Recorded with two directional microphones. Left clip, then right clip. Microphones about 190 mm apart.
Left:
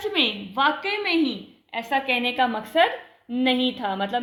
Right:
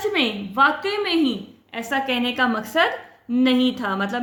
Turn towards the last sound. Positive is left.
turn(degrees=-20)  # may be behind; listen again after turning